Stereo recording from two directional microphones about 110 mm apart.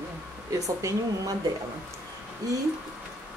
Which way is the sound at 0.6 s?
30° right (ahead or behind).